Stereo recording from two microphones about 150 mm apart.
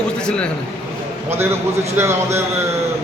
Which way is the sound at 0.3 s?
5° left (ahead or behind).